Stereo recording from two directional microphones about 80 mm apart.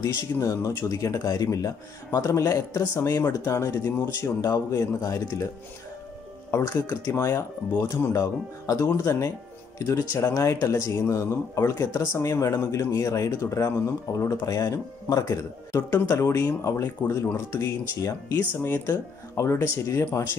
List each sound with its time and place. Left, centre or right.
0.4 s speech: left
6.6 s speech: left
18.5 s speech: left
18.9 s speech: left